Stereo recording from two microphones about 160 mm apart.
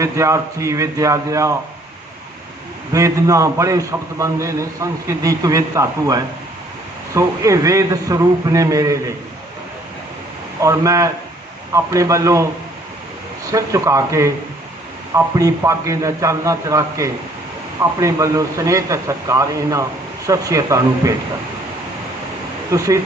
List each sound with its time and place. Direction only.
0.0 s a man's voice: 20° right (ahead or behind)
2.9 s a man's voice: 20° right (ahead or behind)
10.6 s a man's voice: 20° right (ahead or behind)
13.5 s a man's voice: 20° right (ahead or behind)
22.7 s speech: 20° right (ahead or behind)